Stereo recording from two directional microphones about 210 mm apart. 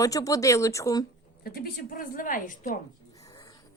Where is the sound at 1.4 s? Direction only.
45° left (ahead or behind).